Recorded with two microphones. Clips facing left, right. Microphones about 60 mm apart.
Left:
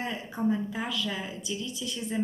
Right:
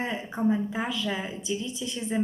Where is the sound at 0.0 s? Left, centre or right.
Right.